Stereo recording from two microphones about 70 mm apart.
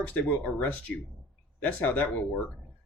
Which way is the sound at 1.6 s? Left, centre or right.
Left.